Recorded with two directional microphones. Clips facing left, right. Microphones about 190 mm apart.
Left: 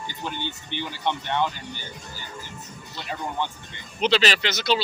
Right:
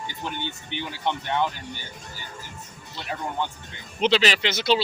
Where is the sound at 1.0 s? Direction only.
5° right (ahead or behind).